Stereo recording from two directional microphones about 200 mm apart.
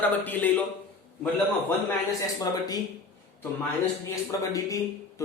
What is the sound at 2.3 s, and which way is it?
Speech, 20° left (ahead or behind).